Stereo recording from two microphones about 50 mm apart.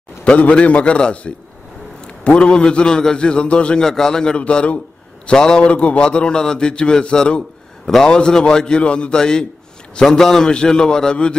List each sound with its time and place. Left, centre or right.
0.2 s a man's voice: left
3.8 s a man's voice: centre
4.4 s a man's voice: left
7.8 s a man's voice: centre